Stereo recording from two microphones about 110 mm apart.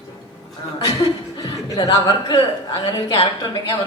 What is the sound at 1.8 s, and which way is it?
Speech, 45° left (ahead or behind).